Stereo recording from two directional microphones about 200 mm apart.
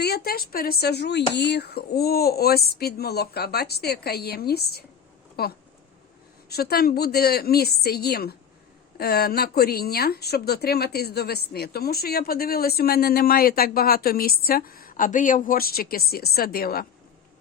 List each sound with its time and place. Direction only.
0.0 s speech: 50° left (ahead or behind)